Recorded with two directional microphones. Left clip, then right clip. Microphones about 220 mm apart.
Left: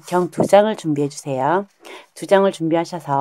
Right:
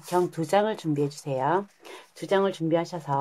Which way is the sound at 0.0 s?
35° left (ahead or behind).